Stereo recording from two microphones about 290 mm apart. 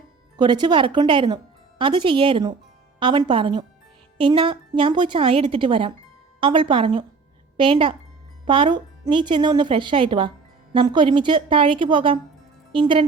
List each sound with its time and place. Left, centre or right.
0.3 s a woman's voice: centre